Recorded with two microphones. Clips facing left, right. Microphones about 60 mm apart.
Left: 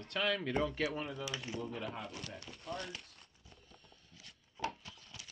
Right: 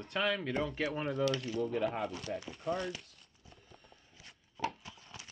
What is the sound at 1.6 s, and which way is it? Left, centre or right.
Speech, right.